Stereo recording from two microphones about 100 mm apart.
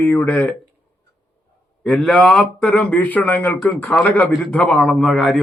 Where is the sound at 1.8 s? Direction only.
5° left (ahead or behind).